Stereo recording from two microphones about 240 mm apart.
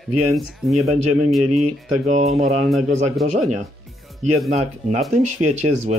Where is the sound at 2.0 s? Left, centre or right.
Right.